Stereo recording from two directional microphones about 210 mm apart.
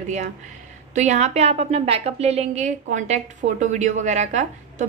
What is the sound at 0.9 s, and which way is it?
A woman's voice, 35° right (ahead or behind).